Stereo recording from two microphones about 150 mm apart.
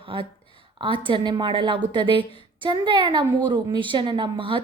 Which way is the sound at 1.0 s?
30° right (ahead or behind).